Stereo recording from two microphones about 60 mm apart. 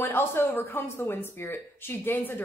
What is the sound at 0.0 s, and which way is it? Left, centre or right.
A woman's voice, left.